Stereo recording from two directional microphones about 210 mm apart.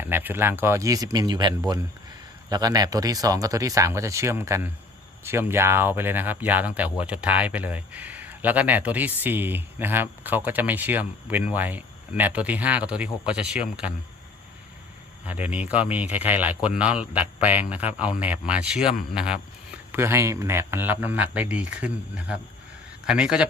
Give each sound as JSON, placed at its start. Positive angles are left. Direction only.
{"t": 0.0, "sound": "speech", "side_deg": -10}
{"t": 15.3, "sound": "a man's voice", "side_deg": -5}